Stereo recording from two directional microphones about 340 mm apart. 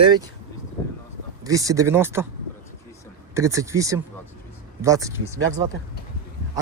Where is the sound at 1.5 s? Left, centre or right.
Centre.